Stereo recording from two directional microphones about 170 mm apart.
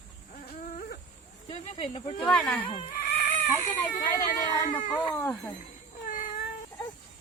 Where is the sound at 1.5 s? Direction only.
30° left (ahead or behind).